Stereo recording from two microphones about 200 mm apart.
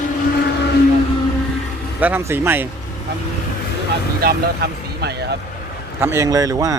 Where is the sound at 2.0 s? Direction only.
10° right (ahead or behind).